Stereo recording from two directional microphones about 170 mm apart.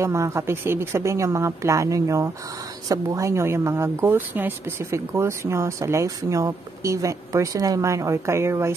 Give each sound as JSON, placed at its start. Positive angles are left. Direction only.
{"t": 0.0, "sound": "speech", "side_deg": -15}